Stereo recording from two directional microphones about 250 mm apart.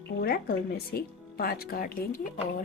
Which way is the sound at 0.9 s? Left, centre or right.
Left.